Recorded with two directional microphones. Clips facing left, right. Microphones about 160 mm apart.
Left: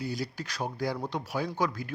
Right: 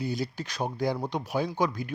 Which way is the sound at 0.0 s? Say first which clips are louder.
Right 3 dB; 25° right (ahead or behind).